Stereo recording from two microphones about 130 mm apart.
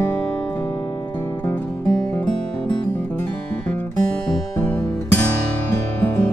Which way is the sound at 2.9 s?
15° left (ahead or behind).